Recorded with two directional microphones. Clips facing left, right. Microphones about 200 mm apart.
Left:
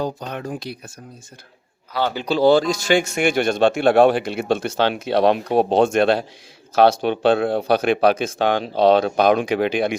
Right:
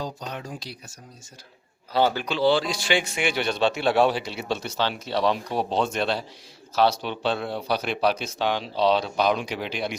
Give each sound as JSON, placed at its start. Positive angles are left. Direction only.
{"t": 0.0, "sound": "speech", "side_deg": 55}
{"t": 2.2, "sound": "speech", "side_deg": 40}